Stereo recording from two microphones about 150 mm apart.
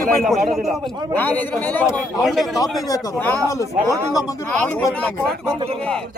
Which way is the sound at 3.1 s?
15° left (ahead or behind).